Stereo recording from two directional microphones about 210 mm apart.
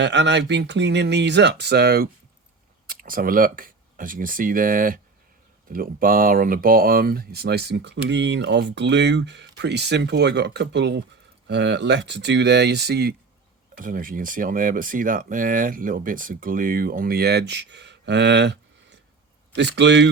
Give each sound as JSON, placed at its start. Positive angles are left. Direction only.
{"t": 0.0, "sound": "speech", "side_deg": -55}